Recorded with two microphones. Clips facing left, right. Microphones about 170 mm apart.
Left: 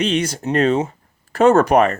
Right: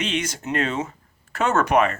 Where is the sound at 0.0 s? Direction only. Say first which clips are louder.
Left 7 dB; 35° left (ahead or behind).